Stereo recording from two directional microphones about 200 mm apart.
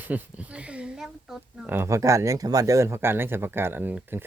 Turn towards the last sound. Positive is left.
turn(degrees=-10)  # may be behind; listen again after turning